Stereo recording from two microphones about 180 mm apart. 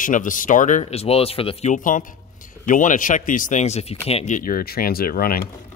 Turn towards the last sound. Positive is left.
turn(degrees=55)  # may be behind; listen again after turning